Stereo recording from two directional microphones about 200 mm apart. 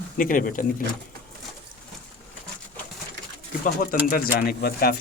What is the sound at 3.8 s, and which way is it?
Speech, 45° left (ahead or behind).